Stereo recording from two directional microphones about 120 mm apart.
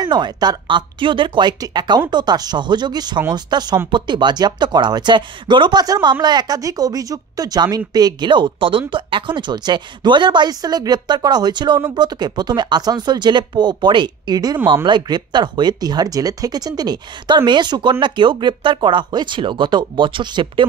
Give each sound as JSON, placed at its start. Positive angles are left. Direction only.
{"t": 0.0, "sound": "speech", "side_deg": -35}